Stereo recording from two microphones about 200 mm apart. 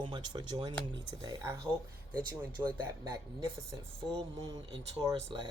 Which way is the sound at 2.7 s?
10° right (ahead or behind).